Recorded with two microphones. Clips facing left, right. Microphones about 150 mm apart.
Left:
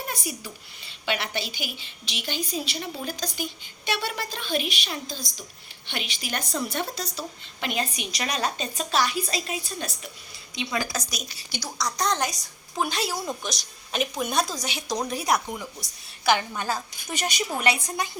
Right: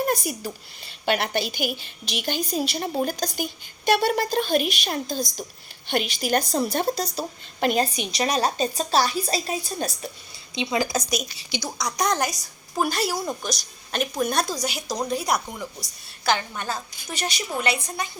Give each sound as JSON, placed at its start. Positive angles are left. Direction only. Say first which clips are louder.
{"t": 0.0, "sound": "a woman's voice", "louder": "right 9 dB", "side_deg": -45}
{"t": 10.5, "sound": "a woman's voice", "louder": "right 5 dB", "side_deg": -25}
{"t": 16.3, "sound": "a woman's voice", "louder": "left 1 dB", "side_deg": 10}